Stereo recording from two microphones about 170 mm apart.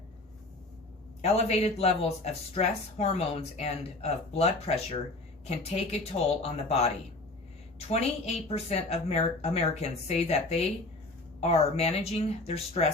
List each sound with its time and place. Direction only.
1.2 s speech: 40° left (ahead or behind)